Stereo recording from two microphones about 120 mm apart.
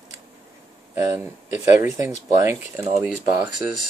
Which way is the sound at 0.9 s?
25° right (ahead or behind).